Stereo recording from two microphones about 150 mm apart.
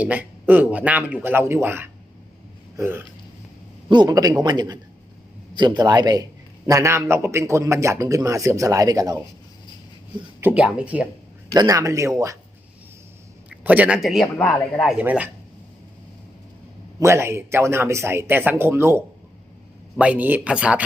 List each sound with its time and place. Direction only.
0.0 s speech: 10° right (ahead or behind)
2.7 s hiccup: 15° right (ahead or behind)
3.8 s a man's voice: 30° right (ahead or behind)
10.4 s speech: 5° right (ahead or behind)
11.5 s a man's voice: 25° right (ahead or behind)
13.5 s a man's voice: 10° right (ahead or behind)
14.9 s speech: 10° right (ahead or behind)
17.0 s speech: 15° right (ahead or behind)